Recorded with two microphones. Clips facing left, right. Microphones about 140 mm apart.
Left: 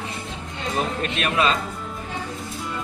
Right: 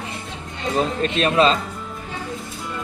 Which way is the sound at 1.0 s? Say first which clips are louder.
Right 7 dB; 30° right (ahead or behind).